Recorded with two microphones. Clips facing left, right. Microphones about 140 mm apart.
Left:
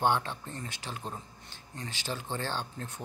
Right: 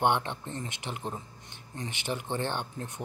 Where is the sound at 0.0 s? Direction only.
20° right (ahead or behind).